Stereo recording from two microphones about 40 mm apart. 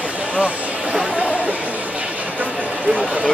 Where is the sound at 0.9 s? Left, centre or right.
Right.